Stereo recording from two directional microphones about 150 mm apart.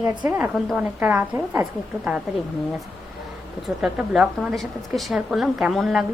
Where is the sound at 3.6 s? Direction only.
5° right (ahead or behind).